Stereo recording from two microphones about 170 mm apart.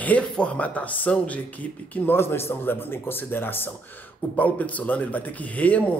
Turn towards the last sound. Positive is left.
turn(degrees=10)  # may be behind; listen again after turning